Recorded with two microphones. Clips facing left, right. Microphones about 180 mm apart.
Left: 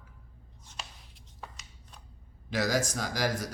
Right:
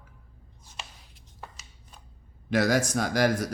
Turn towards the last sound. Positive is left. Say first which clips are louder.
# right 7 dB
turn(degrees=-60)  # may be behind; listen again after turning